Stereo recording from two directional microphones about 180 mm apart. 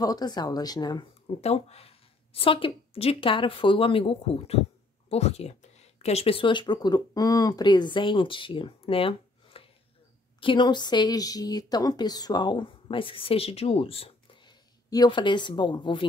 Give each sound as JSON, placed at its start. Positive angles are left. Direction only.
{"t": 0.0, "sound": "a woman's voice", "side_deg": 20}